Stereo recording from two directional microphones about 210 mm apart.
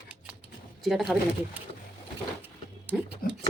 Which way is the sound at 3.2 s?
45° left (ahead or behind).